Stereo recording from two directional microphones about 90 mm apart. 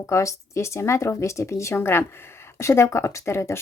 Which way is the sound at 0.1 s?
35° left (ahead or behind).